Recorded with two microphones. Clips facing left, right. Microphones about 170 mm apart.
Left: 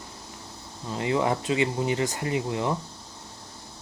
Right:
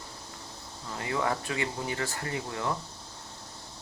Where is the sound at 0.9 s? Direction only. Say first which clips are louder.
Left 6 dB; 20° left (ahead or behind).